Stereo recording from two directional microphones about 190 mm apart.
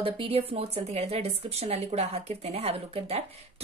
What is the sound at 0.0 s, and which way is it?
A woman's voice, 30° right (ahead or behind).